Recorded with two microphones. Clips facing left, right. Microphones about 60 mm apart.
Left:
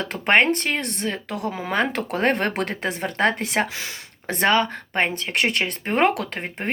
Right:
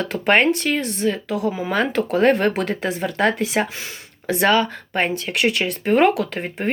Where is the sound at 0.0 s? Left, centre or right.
Left.